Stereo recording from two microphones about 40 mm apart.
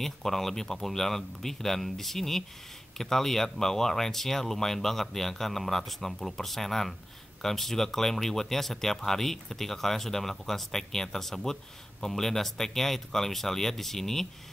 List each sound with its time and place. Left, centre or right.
0.0 s speech: centre